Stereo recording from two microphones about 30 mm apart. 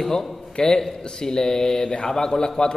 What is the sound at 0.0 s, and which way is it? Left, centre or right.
Speech, centre.